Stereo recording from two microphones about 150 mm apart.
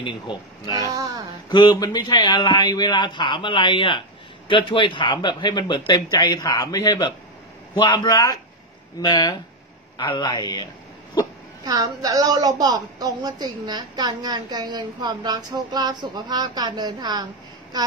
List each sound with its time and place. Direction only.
0.8 s a woman's voice: 20° right (ahead or behind)
1.5 s a man's voice: 30° left (ahead or behind)
11.2 s a sound: 25° left (ahead or behind)
11.6 s a woman's voice: 25° right (ahead or behind)